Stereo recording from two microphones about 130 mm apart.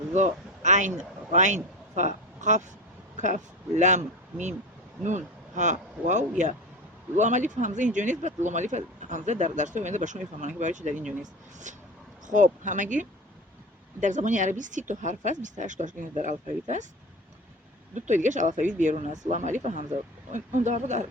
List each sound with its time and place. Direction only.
0.1 s a man's voice: 65° right (ahead or behind)
12.3 s speech: 75° right (ahead or behind)
17.9 s speech: 70° right (ahead or behind)